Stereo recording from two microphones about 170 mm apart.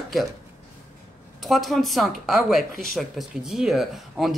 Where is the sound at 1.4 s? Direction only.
Centre (ahead or behind).